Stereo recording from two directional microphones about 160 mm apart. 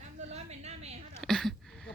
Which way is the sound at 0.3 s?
45° right (ahead or behind).